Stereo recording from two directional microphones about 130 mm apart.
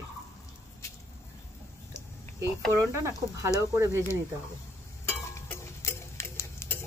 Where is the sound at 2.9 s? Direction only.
20° right (ahead or behind).